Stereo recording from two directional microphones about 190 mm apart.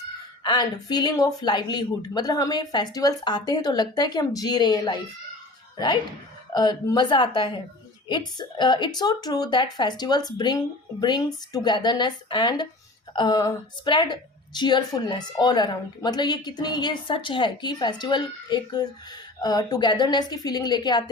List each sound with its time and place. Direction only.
0.4 s a woman's voice: 20° left (ahead or behind)